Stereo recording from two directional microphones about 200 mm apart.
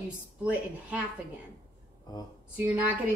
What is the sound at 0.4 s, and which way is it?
Speech, 5° right (ahead or behind).